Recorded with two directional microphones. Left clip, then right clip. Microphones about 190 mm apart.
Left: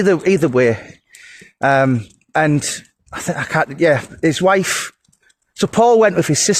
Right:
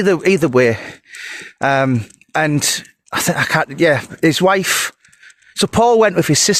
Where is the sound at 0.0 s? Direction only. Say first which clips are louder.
Even; 25° right (ahead or behind).